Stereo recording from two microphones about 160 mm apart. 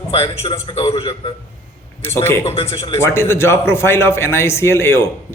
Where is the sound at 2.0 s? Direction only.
15° left (ahead or behind).